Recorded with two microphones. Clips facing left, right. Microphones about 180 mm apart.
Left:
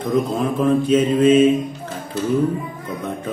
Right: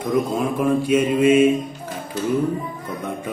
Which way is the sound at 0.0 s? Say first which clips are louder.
Left 1 dB; 10° right (ahead or behind).